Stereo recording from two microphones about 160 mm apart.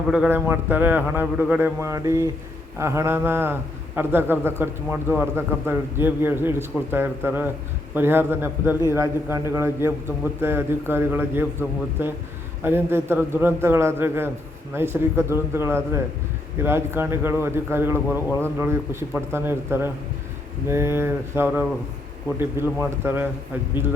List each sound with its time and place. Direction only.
0.3 s a man's voice: 15° right (ahead or behind)